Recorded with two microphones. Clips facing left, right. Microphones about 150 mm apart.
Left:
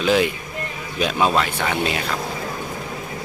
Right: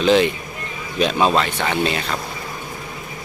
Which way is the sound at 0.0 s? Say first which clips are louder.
Right 3 dB; 10° left (ahead or behind).